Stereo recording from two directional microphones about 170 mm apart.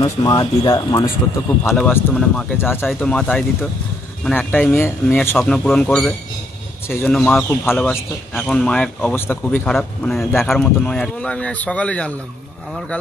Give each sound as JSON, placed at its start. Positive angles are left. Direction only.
{"t": 0.0, "sound": "speech", "side_deg": 20}